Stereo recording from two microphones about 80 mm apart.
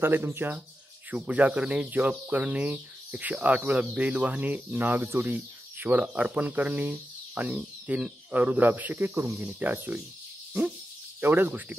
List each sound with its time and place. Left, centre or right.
0.0 s speech: right
1.1 s speech: centre
11.1 s speech: right